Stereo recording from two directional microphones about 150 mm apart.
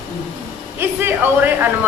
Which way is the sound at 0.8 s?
15° right (ahead or behind).